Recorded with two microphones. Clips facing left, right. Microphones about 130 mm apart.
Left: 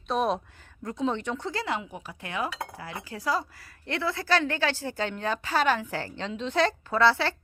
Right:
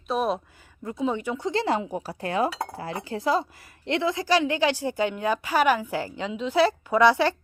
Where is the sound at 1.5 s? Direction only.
35° right (ahead or behind).